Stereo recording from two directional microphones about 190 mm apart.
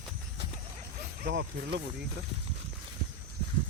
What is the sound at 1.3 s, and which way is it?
Speech, 65° right (ahead or behind).